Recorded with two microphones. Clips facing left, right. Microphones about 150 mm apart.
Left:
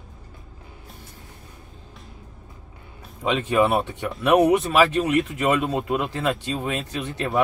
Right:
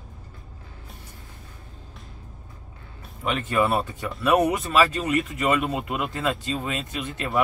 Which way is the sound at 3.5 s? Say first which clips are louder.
Left 2 dB; 20° left (ahead or behind).